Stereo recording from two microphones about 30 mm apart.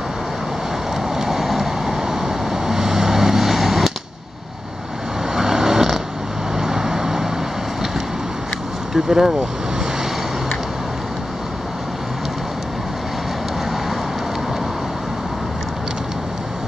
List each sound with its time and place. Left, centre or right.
1.1 s vehicle: centre
5.3 s vehicle: centre
8.9 s speech: centre